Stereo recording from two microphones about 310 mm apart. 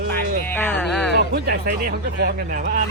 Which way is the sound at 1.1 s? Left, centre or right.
Right.